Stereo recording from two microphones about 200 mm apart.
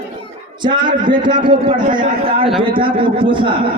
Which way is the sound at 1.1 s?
25° right (ahead or behind).